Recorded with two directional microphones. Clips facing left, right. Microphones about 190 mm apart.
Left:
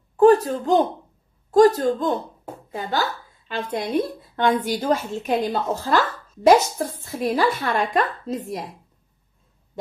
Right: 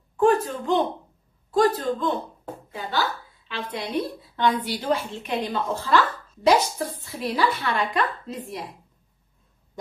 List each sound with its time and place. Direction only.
0.2 s a woman's voice: 35° left (ahead or behind)